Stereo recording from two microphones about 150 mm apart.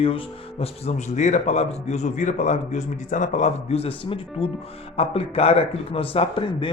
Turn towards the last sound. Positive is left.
turn(degrees=35)  # may be behind; listen again after turning